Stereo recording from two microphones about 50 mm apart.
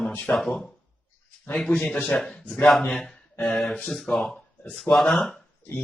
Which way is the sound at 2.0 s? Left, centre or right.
Centre.